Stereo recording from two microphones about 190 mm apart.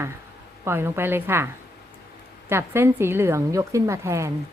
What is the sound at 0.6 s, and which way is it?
Speech, 15° right (ahead or behind).